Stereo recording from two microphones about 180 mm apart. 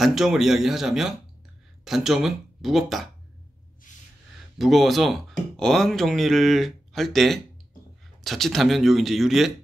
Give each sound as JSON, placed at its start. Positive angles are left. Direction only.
{"t": 0.0, "sound": "speech", "side_deg": 0}
{"t": 3.9, "sound": "gasp", "side_deg": 45}
{"t": 4.6, "sound": "speech", "side_deg": 0}